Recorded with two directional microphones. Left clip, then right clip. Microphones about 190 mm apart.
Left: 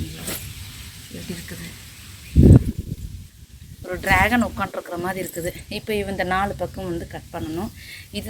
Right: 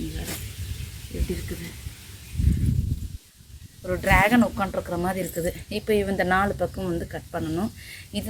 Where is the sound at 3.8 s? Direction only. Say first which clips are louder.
Left 1 dB; 10° right (ahead or behind).